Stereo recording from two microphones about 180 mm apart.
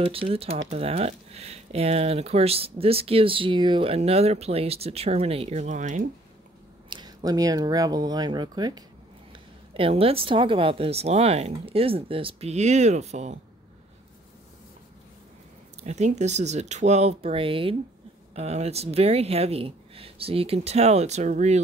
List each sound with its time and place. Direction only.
0.0 s speech: 30° right (ahead or behind)
6.9 s speech: 25° right (ahead or behind)
15.8 s speech: 40° right (ahead or behind)